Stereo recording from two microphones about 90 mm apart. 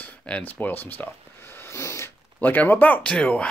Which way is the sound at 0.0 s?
20° left (ahead or behind).